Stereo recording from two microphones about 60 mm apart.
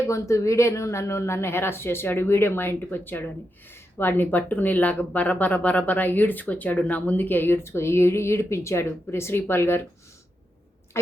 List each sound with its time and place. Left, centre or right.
0.0 s speech: left